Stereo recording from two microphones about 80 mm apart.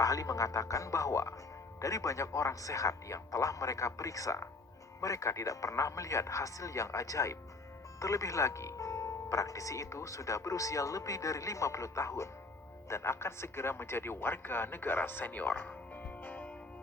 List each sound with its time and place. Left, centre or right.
0.0 s speech: left